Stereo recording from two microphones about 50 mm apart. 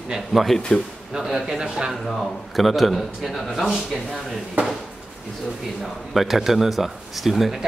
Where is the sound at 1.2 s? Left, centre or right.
Centre.